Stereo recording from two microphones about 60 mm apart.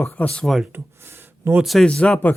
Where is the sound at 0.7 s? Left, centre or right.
Right.